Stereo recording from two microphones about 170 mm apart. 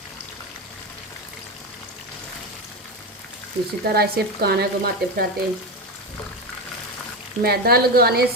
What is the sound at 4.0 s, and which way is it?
Speech, 65° right (ahead or behind).